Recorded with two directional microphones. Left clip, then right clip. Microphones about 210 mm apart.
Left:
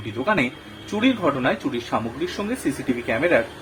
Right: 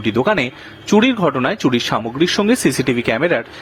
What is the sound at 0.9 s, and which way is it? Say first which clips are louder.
Speech: right 7 dB; 40° right (ahead or behind).